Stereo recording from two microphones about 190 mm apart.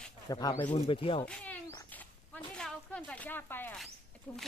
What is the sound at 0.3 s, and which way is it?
Speech, 20° left (ahead or behind).